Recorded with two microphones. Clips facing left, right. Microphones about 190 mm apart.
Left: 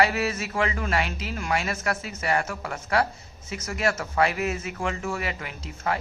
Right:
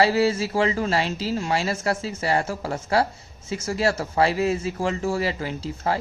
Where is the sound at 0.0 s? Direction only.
30° right (ahead or behind).